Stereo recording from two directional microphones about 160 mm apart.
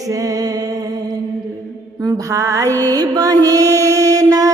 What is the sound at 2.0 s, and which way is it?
Mantra, 20° right (ahead or behind).